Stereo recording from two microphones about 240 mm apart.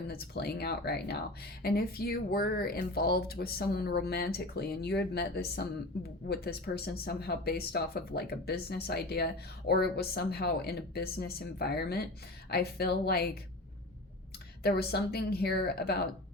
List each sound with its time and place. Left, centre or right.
0.1 s speech: left
14.6 s speech: left